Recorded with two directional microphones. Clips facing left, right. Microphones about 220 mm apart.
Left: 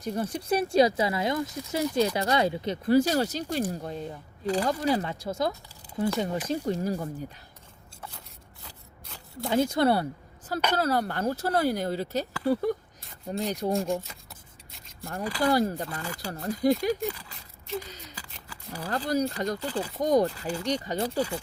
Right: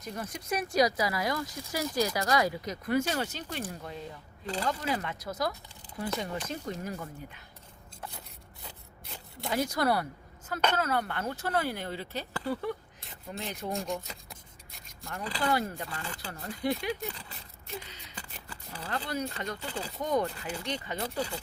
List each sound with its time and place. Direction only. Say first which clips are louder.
0.0 s speech: left 8 dB; 30° left (ahead or behind)
9.4 s speech: left 6 dB; 25° left (ahead or behind)
15.0 s speech: left 6 dB; 35° left (ahead or behind)
18.7 s speech: left 7 dB; 40° left (ahead or behind)